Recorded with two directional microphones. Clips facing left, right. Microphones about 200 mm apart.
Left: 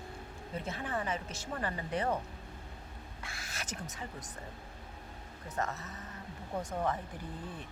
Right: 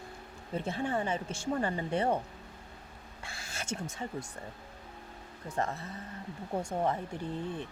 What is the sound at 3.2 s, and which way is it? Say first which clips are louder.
Speech: right 5 dB; 30° right (ahead or behind).